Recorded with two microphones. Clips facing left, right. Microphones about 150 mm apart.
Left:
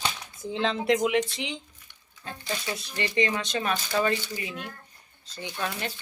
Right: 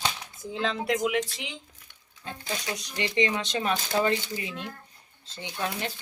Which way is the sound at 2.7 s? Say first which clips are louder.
Even; 20° right (ahead or behind).